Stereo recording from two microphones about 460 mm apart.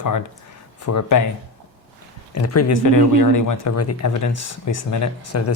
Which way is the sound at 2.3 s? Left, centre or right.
Left.